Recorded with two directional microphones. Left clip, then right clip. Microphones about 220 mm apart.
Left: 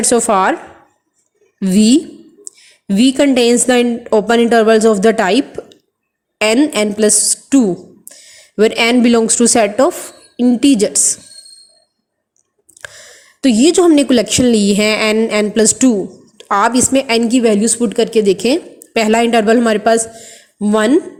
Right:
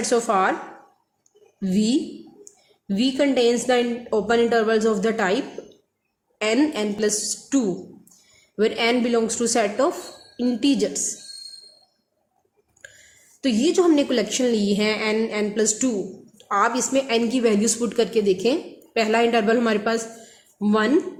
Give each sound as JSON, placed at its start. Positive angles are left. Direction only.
{"t": 0.0, "sound": "a woman's voice", "side_deg": 30}
{"t": 1.5, "sound": "a woman's voice", "side_deg": 35}
{"t": 13.4, "sound": "a woman's voice", "side_deg": 30}